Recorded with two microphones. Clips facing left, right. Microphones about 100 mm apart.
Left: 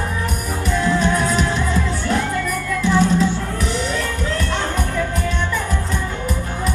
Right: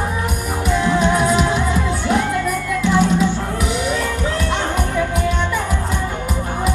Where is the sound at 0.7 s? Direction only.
15° right (ahead or behind).